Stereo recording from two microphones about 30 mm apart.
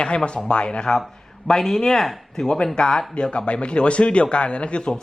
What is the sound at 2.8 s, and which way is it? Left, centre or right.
A man's voice, left.